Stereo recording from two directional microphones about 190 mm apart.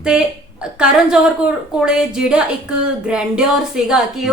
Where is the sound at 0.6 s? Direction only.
5° right (ahead or behind).